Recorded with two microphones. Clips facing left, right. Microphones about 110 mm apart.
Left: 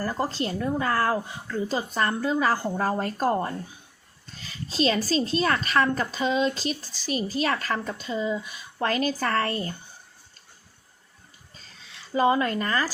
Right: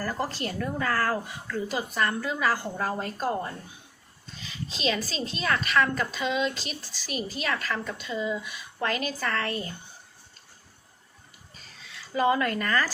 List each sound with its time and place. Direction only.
0.0 s speech: 20° left (ahead or behind); by 9.7 s 40° left (ahead or behind)
11.9 s speech: 25° left (ahead or behind)